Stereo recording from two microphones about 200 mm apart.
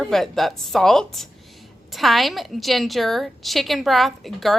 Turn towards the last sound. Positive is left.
turn(degrees=0)  # may be behind; listen again after turning